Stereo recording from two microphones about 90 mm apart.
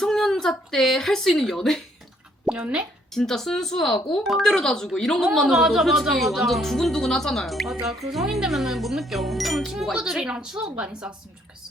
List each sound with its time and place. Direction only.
0.0 s speech: 5° left (ahead or behind)
2.6 s speech: 15° right (ahead or behind)
3.2 s a woman's voice: 5° left (ahead or behind); by 11.1 s 10° right (ahead or behind)